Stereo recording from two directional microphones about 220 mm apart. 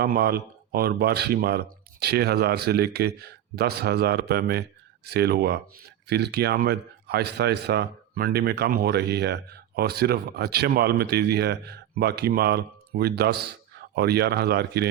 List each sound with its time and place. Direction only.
0.0 s speech: 45° right (ahead or behind)